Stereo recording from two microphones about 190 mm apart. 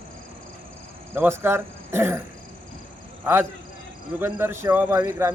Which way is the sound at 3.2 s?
10° right (ahead or behind).